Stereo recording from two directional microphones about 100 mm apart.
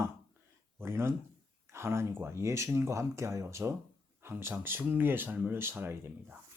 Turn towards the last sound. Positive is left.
turn(degrees=-25)  # may be behind; listen again after turning